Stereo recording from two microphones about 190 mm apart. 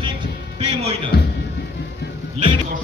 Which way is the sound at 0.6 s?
30° right (ahead or behind).